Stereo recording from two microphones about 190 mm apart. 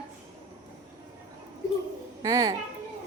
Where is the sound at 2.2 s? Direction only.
20° right (ahead or behind).